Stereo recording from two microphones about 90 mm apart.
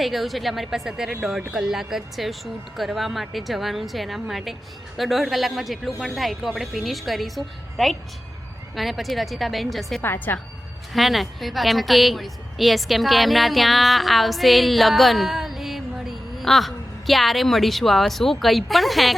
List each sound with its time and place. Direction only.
0.0 s a woman's voice: centre (ahead or behind)
10.0 s a woman's voice: 25° left (ahead or behind)
10.9 s a woman's voice: centre (ahead or behind)